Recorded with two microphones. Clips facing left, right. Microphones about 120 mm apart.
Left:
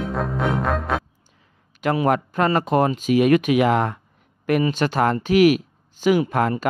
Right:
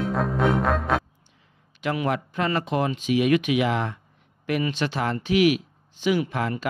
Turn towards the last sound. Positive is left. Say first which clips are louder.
# left 5 dB
turn(degrees=45)  # may be behind; listen again after turning